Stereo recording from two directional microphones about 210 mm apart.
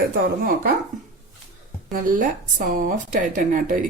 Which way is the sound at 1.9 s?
40° right (ahead or behind).